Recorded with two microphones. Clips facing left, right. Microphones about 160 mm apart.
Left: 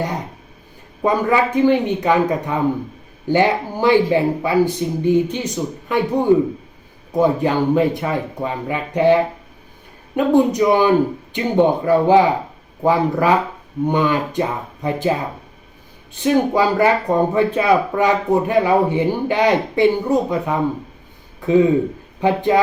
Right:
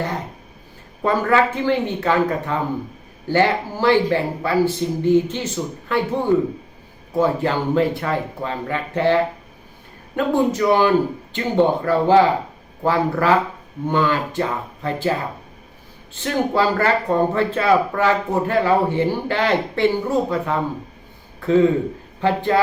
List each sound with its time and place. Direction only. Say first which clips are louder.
1.0 s speech: left 1 dB; 15° left (ahead or behind)
16.1 s speech: left 4 dB; 15° left (ahead or behind)